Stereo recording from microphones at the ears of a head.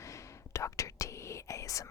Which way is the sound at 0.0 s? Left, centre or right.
Left.